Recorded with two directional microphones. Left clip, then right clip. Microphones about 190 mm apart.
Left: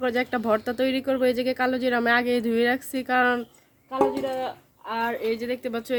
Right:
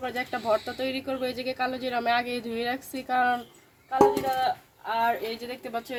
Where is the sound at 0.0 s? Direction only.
55° left (ahead or behind).